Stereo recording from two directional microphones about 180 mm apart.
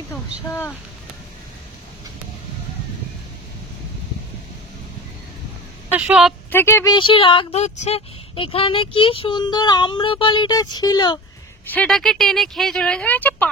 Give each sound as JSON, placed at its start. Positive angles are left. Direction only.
{"t": 5.9, "sound": "speech", "side_deg": -5}
{"t": 6.5, "sound": "speech", "side_deg": 15}
{"t": 11.7, "sound": "speech", "side_deg": 5}